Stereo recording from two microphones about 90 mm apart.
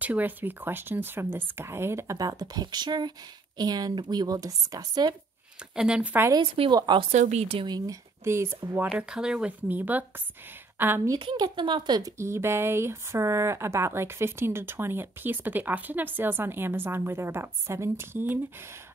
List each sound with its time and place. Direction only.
0.0 s speech: 20° right (ahead or behind); by 5.1 s 45° right (ahead or behind)
5.8 s speech: 10° right (ahead or behind)
6.4 s speech: 90° right
7.6 s speech: 45° right (ahead or behind)
8.9 s a woman's voice: 10° right (ahead or behind)
11.3 s speech: 55° right (ahead or behind)
12.2 s speech: 30° right (ahead or behind)